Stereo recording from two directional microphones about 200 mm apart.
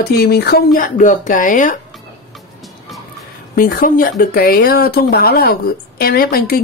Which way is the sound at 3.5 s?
45° left (ahead or behind).